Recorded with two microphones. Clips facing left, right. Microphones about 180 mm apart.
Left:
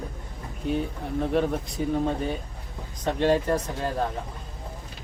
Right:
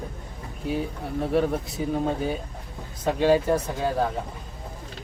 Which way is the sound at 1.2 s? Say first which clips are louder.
Right 1 dB; 5° right (ahead or behind).